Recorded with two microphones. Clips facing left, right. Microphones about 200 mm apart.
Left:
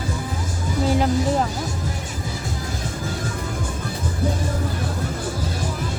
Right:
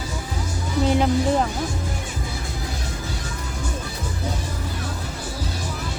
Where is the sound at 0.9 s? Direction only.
Centre (ahead or behind).